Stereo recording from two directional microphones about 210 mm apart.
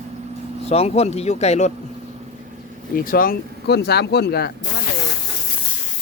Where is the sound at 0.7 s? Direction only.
30° left (ahead or behind).